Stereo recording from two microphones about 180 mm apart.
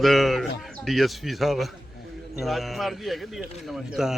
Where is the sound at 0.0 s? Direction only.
Centre (ahead or behind).